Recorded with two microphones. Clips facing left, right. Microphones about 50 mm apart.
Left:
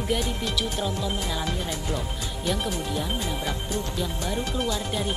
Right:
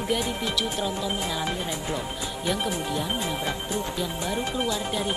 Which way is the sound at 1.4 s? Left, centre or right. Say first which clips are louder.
Right 1 dB; centre.